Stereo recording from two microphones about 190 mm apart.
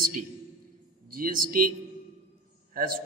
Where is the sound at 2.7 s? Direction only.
50° right (ahead or behind).